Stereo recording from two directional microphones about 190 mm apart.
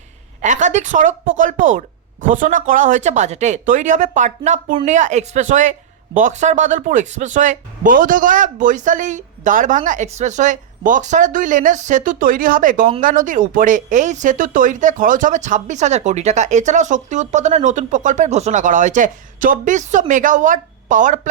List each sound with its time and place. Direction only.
0.4 s speech: 40° right (ahead or behind)